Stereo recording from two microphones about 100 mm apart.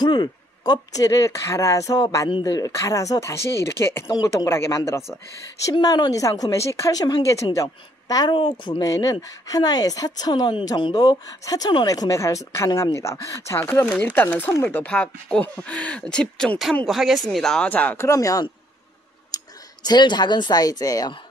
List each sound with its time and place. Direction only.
0.0 s speech: 45° left (ahead or behind)
2.4 s speech: 35° left (ahead or behind)
5.7 s speech: 40° left (ahead or behind)
8.9 s speech: 35° left (ahead or behind)
13.7 s speech: 20° left (ahead or behind)
17.6 s speech: 15° left (ahead or behind)
17.9 s speech: 30° left (ahead or behind)